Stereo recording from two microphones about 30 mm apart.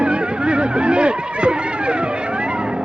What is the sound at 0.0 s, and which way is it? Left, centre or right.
Music, right.